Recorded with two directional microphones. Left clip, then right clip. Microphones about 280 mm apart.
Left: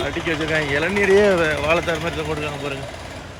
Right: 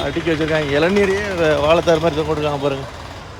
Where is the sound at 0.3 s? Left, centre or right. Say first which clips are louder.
Right 3 dB; centre.